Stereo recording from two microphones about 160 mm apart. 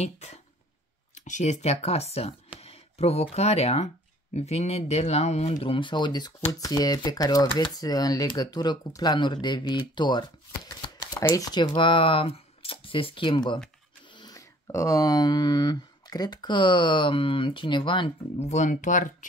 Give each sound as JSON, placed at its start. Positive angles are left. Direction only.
{"t": 0.0, "sound": "speech", "side_deg": 45}
{"t": 18.4, "sound": "speech", "side_deg": 45}